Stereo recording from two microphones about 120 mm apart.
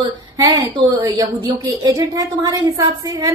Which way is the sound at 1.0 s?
25° right (ahead or behind).